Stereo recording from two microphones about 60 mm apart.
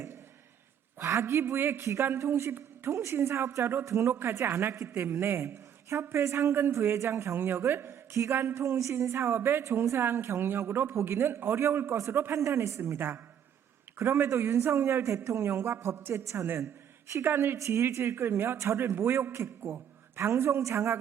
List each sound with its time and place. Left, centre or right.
0.9 s a woman's voice: right
2.5 s a woman's voice: right
2.9 s a man's voice: right
7.3 s a woman's voice: right
8.1 s speech: right
8.4 s a woman's voice: right
8.6 s a man's voice: right
11.9 s speech: right
14.0 s a man's voice: right
17.2 s a man's voice: right
18.6 s speech: right
18.9 s a woman's voice: right